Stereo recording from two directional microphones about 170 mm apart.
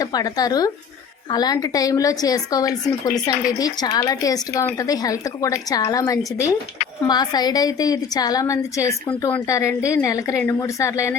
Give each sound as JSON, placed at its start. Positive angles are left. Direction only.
{"t": 0.0, "sound": "a woman's voice", "side_deg": 20}